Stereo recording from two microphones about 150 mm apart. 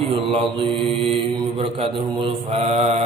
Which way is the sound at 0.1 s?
35° right (ahead or behind).